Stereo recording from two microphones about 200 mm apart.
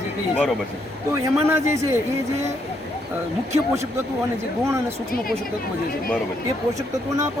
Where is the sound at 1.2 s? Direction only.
15° right (ahead or behind).